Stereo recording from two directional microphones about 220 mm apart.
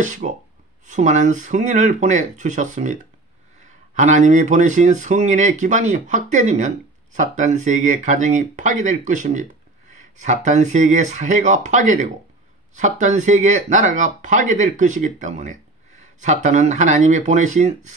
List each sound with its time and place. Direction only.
0.0 s speech: 35° right (ahead or behind)